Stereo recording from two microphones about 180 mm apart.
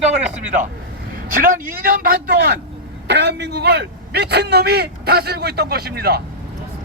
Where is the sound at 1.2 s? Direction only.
50° right (ahead or behind).